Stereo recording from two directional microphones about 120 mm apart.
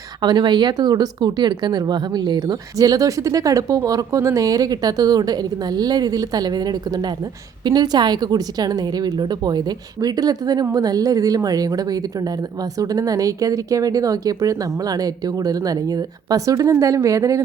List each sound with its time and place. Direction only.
0.2 s a woman's voice: 40° right (ahead or behind)